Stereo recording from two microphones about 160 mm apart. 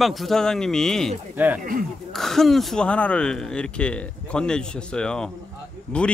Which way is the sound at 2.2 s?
Centre (ahead or behind).